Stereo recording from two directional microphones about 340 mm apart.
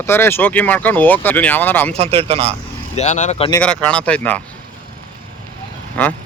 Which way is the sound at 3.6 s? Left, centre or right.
Centre.